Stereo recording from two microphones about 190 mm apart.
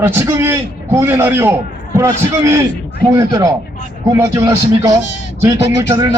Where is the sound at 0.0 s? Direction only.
15° right (ahead or behind).